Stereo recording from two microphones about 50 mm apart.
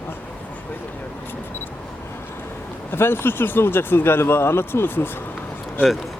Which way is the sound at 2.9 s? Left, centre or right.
Left.